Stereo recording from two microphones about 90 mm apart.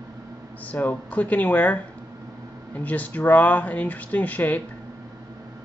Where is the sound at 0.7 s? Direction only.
15° left (ahead or behind).